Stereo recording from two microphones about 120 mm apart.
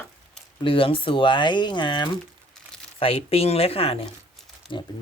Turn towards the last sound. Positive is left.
turn(degrees=45)  # may be behind; listen again after turning